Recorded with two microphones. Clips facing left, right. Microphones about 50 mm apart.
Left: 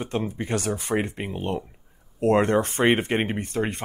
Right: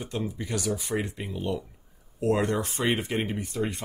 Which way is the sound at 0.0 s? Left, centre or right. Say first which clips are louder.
Left 4 dB; left.